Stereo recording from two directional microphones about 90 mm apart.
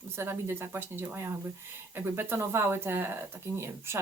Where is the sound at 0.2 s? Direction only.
25° right (ahead or behind).